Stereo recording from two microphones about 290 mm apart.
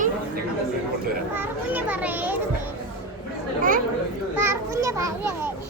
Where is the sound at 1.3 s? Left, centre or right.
Centre.